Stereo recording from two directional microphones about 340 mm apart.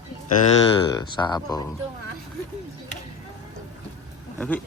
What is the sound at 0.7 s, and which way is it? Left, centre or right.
Speech, centre.